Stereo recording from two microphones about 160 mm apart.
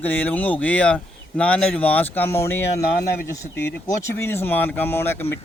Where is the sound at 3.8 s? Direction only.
15° left (ahead or behind).